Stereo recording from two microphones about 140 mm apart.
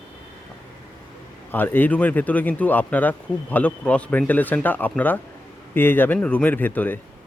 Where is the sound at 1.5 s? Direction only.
15° left (ahead or behind).